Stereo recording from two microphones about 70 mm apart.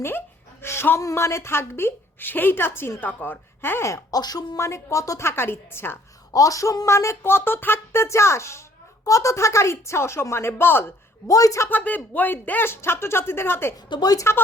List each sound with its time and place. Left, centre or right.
0.6 s a sound: left
1.0 s speech: left
3.9 s speech: left
4.5 s speech: left
6.3 s a man's voice: left
11.3 s a man's voice: left
11.7 s speech: left
13.7 s speech: left